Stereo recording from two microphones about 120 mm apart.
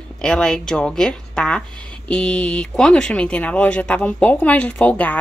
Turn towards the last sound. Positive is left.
turn(degrees=10)  # may be behind; listen again after turning